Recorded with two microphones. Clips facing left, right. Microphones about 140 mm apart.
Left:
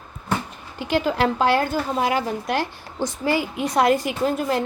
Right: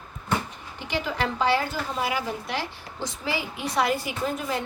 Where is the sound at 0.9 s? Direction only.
50° left (ahead or behind).